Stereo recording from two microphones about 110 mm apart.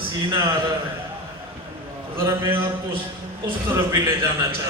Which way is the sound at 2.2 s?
20° right (ahead or behind).